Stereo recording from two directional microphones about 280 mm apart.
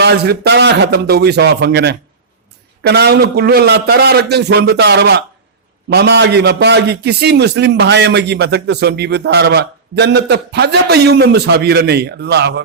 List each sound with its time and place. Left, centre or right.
0.0 s a man's voice: right